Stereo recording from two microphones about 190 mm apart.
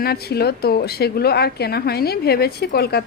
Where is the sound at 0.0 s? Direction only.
55° left (ahead or behind).